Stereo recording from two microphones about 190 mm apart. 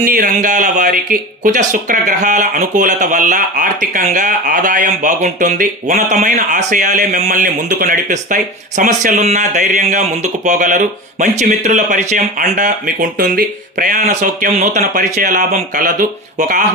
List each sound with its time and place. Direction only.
0.0 s speech: 45° right (ahead or behind)